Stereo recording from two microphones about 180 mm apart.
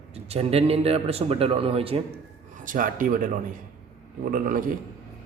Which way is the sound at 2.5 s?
45° right (ahead or behind).